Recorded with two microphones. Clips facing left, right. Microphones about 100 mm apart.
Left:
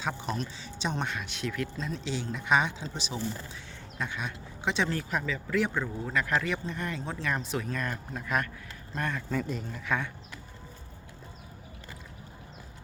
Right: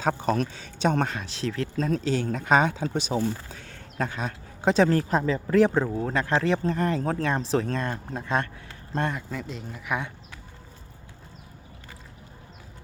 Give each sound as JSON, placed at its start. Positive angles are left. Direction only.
{"t": 0.0, "sound": "speech", "side_deg": -45}
{"t": 1.1, "sound": "speech", "side_deg": -35}
{"t": 7.3, "sound": "speech", "side_deg": -30}
{"t": 9.3, "sound": "speech", "side_deg": 0}